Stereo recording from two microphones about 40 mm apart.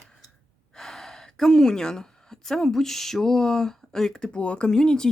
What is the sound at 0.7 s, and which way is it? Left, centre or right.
Speech, centre.